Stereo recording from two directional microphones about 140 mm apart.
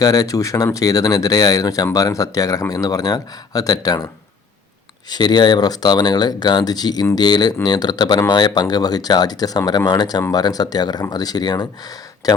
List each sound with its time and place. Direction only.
0.0 s speech: 25° left (ahead or behind)